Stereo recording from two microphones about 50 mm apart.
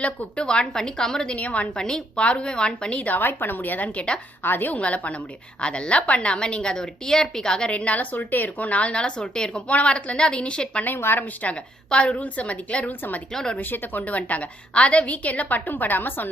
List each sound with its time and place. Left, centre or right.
0.0 s a woman's voice: left
1.4 s a woman's voice: left
1.7 s a woman's voice: centre
3.1 s a woman's voice: left
3.8 s a woman's voice: left
4.4 s a woman's voice: left
4.8 s a woman's voice: left
10.8 s speech: left
11.4 s a woman's voice: left
13.3 s a woman's voice: centre
13.6 s a woman's voice: left